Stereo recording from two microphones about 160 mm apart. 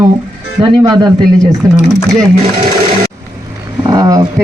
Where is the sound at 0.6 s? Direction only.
25° right (ahead or behind).